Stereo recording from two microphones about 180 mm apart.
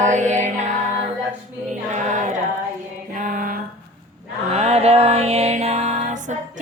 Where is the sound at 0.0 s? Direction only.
45° right (ahead or behind).